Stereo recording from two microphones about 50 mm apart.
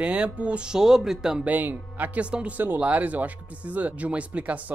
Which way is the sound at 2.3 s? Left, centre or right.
Right.